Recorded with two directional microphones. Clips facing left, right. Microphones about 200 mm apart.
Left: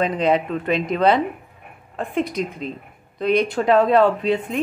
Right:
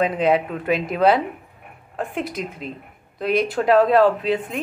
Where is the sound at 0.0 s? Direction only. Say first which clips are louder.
Even; 5° right (ahead or behind).